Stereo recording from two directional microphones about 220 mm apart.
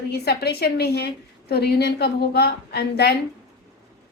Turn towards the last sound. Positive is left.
turn(degrees=45)  # may be behind; listen again after turning